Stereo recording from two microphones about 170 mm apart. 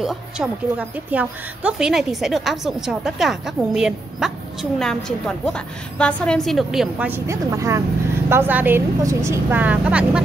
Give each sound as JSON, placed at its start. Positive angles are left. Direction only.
{"t": 0.0, "sound": "a woman's voice", "side_deg": -5}